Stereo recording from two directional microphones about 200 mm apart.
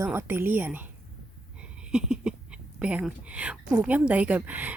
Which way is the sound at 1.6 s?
5° right (ahead or behind).